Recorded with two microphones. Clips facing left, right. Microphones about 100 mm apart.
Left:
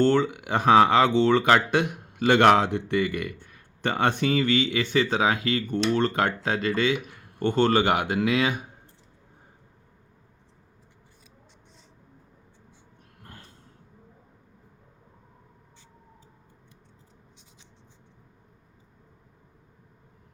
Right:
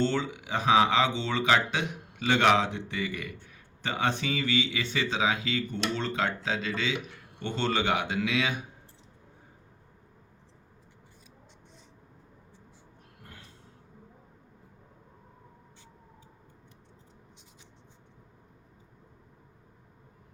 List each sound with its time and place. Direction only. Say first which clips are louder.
0.0 s speech: left 7 dB; 55° left (ahead or behind)